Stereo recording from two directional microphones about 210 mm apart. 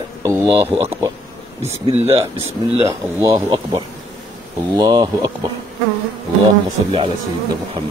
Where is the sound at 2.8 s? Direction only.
15° right (ahead or behind).